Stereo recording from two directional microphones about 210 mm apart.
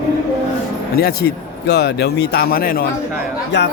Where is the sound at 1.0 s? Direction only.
50° left (ahead or behind).